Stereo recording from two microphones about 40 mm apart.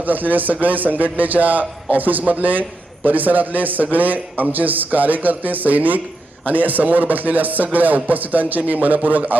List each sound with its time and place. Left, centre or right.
0.0 s a man's voice: right